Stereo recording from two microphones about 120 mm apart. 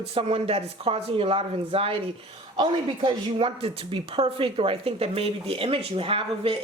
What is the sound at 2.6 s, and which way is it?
Speech, 40° right (ahead or behind).